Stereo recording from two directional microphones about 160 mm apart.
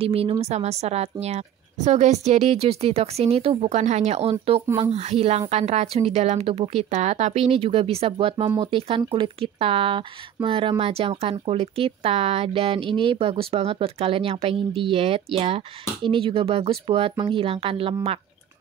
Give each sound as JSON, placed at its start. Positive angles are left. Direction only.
{"t": 0.0, "sound": "speech", "side_deg": -35}
{"t": 4.6, "sound": "speech", "side_deg": -15}
{"t": 4.9, "sound": "speech", "side_deg": -40}